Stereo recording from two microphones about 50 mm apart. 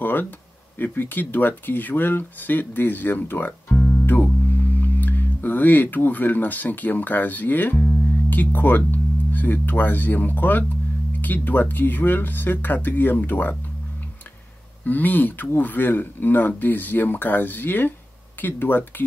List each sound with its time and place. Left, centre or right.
0.0 s a sound: left
0.7 s speech: left
14.9 s speech: left